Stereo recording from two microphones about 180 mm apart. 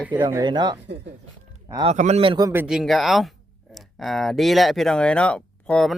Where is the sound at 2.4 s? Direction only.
10° right (ahead or behind).